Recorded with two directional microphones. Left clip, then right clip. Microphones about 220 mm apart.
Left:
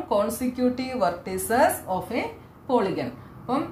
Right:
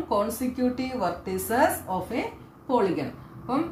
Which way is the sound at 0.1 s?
25° left (ahead or behind).